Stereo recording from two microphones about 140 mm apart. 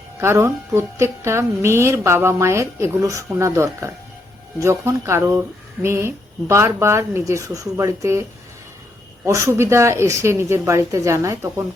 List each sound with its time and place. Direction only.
0.2 s speech: 20° right (ahead or behind)
9.2 s speech: 20° right (ahead or behind)